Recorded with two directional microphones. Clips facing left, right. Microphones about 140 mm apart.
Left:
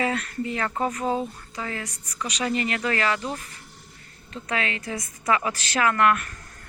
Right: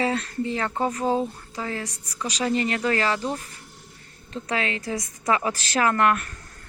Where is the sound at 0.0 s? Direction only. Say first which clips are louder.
Right 1 dB; 30° right (ahead or behind).